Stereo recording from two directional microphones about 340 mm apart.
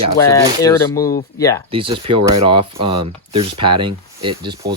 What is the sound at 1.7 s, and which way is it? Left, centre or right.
Speech, centre.